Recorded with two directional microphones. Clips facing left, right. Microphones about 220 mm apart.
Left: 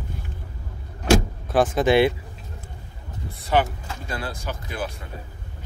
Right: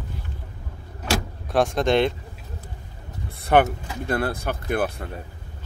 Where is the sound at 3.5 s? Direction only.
60° right (ahead or behind).